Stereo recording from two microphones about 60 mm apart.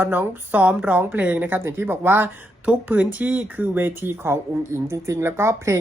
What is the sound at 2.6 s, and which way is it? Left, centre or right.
A woman's voice, right.